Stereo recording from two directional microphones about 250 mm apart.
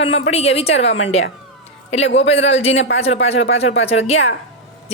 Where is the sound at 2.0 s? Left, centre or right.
Left.